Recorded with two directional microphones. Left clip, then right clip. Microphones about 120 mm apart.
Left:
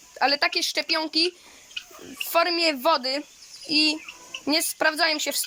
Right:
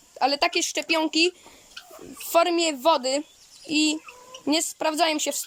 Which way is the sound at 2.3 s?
25° right (ahead or behind).